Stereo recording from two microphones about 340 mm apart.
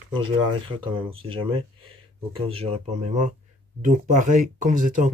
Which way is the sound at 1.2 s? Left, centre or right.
Centre.